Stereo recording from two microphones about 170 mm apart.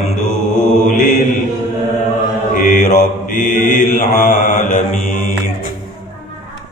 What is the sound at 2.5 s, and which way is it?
Mantra, 50° left (ahead or behind).